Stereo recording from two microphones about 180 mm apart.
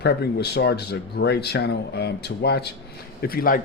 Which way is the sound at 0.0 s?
65° left (ahead or behind).